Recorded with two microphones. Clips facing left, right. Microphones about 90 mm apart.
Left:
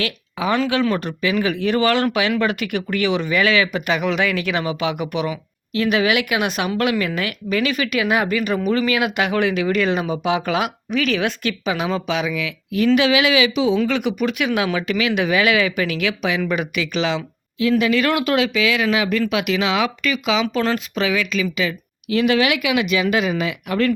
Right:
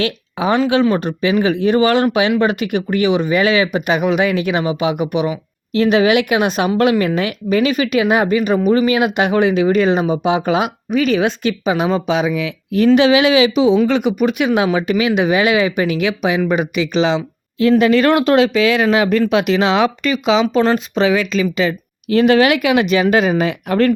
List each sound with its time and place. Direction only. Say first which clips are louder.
0.0 s speech: right 5 dB; 25° right (ahead or behind)
17.6 s speech: right 6 dB; 40° right (ahead or behind)